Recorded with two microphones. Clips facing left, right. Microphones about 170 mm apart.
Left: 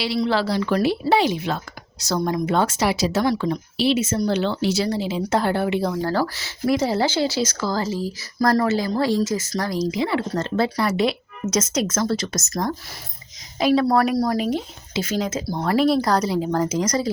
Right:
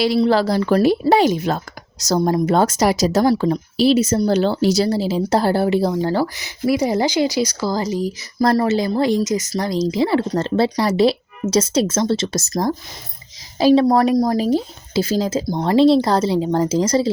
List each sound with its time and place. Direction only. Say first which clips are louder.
0.2 s speech: right 5 dB; 45° right (ahead or behind); by 9.8 s 20° right (ahead or behind)
9.9 s speech: right 5 dB; 35° right (ahead or behind)